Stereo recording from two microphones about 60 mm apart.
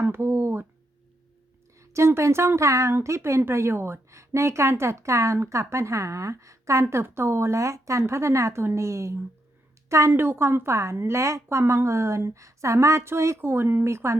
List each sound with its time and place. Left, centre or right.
0.0 s speech: right
1.8 s a woman's voice: right
6.8 s a woman's voice: right